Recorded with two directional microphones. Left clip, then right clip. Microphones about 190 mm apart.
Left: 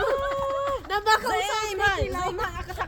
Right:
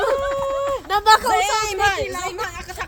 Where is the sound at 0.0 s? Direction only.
55° right (ahead or behind).